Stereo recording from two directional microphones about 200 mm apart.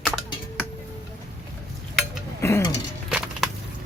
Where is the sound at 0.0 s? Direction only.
Centre (ahead or behind).